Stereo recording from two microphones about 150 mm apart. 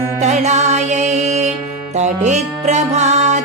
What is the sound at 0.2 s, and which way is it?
Music, 50° right (ahead or behind).